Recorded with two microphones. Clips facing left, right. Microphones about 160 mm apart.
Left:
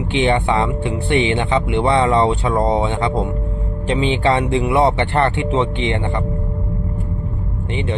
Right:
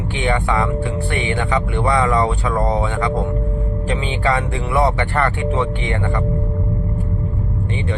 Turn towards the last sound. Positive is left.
turn(degrees=25)  # may be behind; listen again after turning